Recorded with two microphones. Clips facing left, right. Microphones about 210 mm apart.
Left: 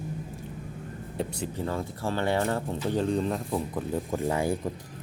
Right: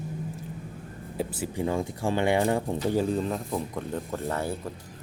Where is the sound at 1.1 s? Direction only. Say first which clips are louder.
Right 2 dB; 5° right (ahead or behind).